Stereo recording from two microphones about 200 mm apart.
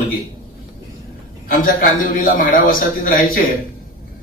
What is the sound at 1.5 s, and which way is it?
A man's voice, 45° left (ahead or behind).